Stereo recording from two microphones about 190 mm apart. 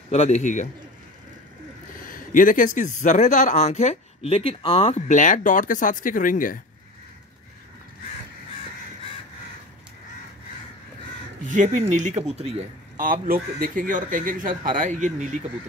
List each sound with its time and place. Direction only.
0.1 s a man's voice: 35° left (ahead or behind)
2.0 s speech: 45° left (ahead or behind)
11.5 s speech: 40° right (ahead or behind)